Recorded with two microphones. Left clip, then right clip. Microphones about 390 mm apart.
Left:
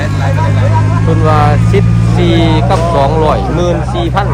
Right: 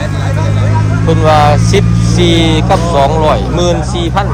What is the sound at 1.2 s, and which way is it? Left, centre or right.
Speech, centre.